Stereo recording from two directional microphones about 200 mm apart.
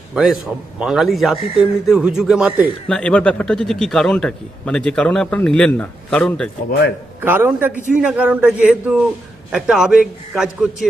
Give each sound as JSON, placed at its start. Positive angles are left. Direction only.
{"t": 0.1, "sound": "a man's voice", "side_deg": -5}
{"t": 6.7, "sound": "a man's voice", "side_deg": 50}
{"t": 7.2, "sound": "a man's voice", "side_deg": -10}